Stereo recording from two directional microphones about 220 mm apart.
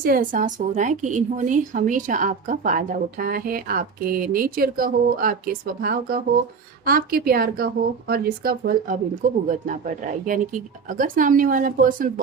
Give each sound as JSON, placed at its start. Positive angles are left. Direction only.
{"t": 0.0, "sound": "a woman's voice", "side_deg": -40}